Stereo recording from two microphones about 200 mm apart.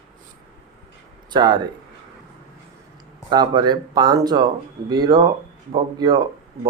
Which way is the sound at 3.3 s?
20° right (ahead or behind).